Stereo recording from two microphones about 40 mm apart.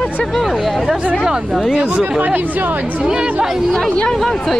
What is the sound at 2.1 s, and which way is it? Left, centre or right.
Speech, right.